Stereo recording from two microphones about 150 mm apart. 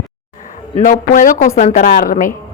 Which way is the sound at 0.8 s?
60° left (ahead or behind).